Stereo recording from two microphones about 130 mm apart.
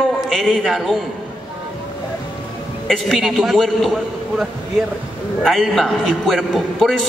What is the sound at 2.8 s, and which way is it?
A man's voice, centre (ahead or behind).